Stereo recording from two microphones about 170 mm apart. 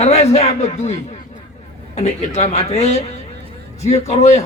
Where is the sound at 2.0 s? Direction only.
40° left (ahead or behind).